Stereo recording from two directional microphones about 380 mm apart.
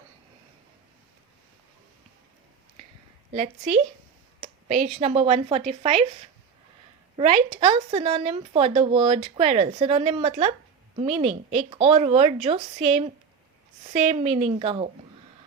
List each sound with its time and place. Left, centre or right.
3.3 s speech: centre
4.4 s a sound: right
4.9 s speech: centre
7.6 s speech: centre
13.9 s speech: centre